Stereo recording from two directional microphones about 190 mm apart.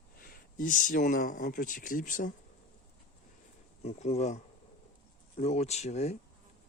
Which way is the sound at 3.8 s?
35° left (ahead or behind).